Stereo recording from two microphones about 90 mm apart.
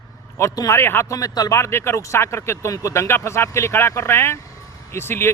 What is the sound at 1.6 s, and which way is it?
Speech, 30° left (ahead or behind).